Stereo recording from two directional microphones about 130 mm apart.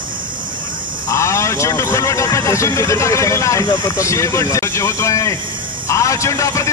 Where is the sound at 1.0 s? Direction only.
20° left (ahead or behind).